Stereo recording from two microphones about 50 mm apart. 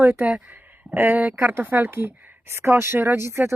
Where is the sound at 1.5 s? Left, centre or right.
Right.